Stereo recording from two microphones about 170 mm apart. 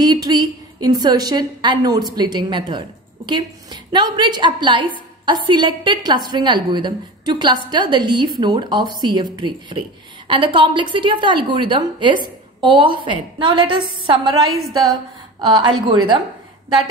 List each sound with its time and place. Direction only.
0.0 s a woman's voice: 25° right (ahead or behind)